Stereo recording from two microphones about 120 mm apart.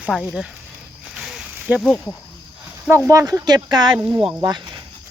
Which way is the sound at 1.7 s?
15° right (ahead or behind).